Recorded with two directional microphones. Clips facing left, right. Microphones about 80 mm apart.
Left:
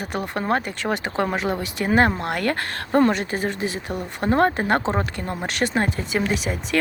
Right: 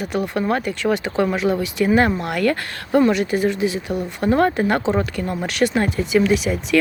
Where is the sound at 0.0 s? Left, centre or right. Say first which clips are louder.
Right 4 dB; left.